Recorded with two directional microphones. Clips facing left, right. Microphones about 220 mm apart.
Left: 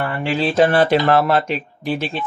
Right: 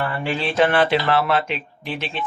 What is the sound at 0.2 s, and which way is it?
Speech, 35° left (ahead or behind).